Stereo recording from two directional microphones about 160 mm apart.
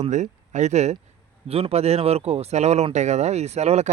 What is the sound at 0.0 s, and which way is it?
A man's voice, 50° right (ahead or behind).